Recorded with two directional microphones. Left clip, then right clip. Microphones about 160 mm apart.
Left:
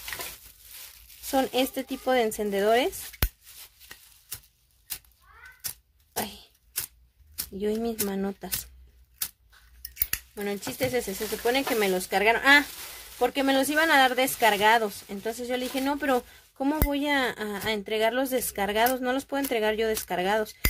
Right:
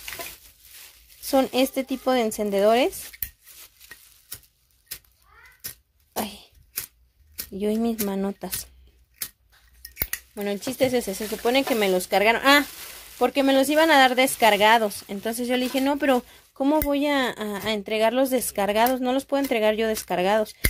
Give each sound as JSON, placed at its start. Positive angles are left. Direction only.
{"t": 1.3, "sound": "speech", "side_deg": -35}
{"t": 3.6, "sound": "a sound", "side_deg": 10}
{"t": 6.1, "sound": "cough", "side_deg": -35}
{"t": 7.5, "sound": "speech", "side_deg": -35}
{"t": 10.3, "sound": "speech", "side_deg": -40}